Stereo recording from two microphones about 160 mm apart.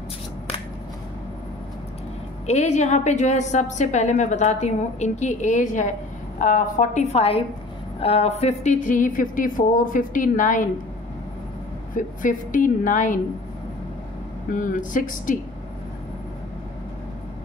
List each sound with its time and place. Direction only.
2.4 s a woman's voice: 45° left (ahead or behind)
12.0 s a woman's voice: 55° left (ahead or behind)
14.5 s a woman's voice: 55° left (ahead or behind)